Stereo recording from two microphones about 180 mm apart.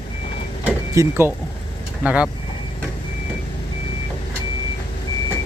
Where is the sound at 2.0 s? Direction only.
5° right (ahead or behind).